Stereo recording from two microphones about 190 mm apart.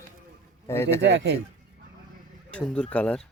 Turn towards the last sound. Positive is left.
turn(degrees=5)  # may be behind; listen again after turning